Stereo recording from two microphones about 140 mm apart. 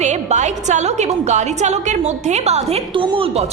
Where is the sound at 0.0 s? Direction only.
55° right (ahead or behind).